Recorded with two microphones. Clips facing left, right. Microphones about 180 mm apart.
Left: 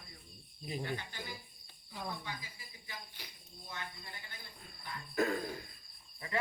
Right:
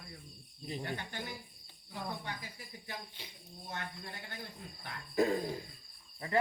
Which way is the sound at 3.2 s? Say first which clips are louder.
Right 2 dB; 25° right (ahead or behind).